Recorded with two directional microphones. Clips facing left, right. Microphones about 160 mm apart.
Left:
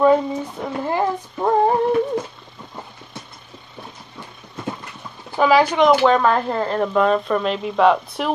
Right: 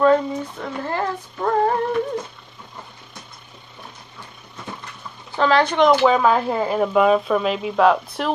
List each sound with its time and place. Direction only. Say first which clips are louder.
0.0 s speech: left 1 dB; 15° left (ahead or behind)
5.4 s speech: left 2 dB; 5° left (ahead or behind)